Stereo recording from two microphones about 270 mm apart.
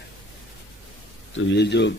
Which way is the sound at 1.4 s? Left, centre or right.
Left.